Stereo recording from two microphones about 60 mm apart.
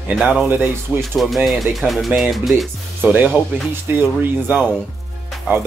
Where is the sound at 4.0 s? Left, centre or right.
Right.